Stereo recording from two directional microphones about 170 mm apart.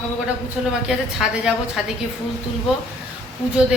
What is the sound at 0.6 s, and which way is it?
Speech, 5° right (ahead or behind).